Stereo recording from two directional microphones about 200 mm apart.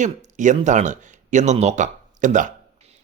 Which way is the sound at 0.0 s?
40° right (ahead or behind).